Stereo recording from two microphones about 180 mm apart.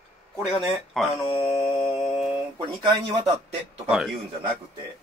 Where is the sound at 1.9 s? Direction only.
Centre (ahead or behind).